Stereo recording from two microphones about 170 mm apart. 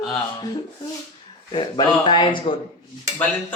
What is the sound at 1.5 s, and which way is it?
Speech, 30° left (ahead or behind).